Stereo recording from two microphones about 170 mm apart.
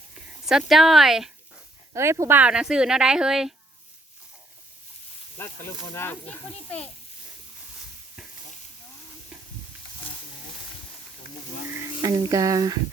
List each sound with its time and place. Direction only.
0.7 s speech: centre (ahead or behind)
1.9 s speech: 15° right (ahead or behind)
5.4 s speech: 15° left (ahead or behind)
11.7 s speech: 15° right (ahead or behind)